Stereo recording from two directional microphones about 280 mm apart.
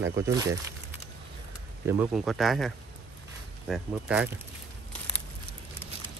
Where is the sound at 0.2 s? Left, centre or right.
Centre.